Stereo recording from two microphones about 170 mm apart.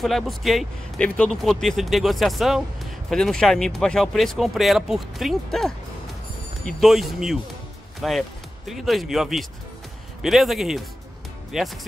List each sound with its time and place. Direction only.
0.0 s speech: centre (ahead or behind)